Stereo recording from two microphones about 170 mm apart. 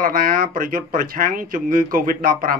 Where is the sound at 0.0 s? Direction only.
55° right (ahead or behind).